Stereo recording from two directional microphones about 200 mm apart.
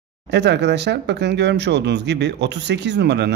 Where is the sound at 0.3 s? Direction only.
60° right (ahead or behind).